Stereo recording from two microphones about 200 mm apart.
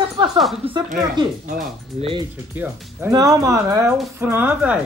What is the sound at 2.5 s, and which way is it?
Speech, 10° right (ahead or behind).